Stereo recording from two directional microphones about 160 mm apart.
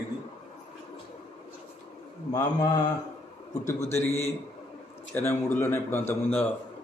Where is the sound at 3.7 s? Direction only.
15° left (ahead or behind).